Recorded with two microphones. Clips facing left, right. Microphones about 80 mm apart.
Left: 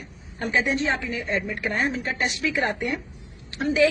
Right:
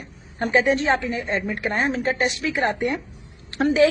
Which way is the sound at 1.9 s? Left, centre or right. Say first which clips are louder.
Right 6 dB; right.